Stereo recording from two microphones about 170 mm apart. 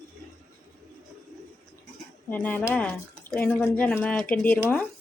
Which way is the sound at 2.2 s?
10° left (ahead or behind).